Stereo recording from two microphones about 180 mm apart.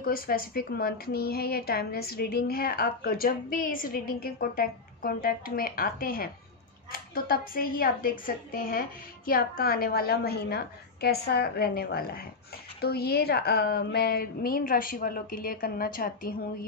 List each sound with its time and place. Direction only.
0.0 s a woman's voice: 55° left (ahead or behind)